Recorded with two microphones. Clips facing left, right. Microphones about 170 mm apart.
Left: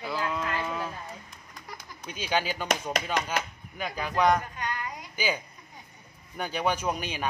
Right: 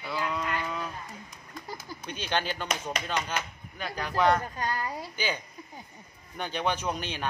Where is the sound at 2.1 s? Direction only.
5° left (ahead or behind).